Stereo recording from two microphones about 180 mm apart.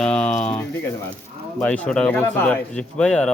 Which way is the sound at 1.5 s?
5° left (ahead or behind).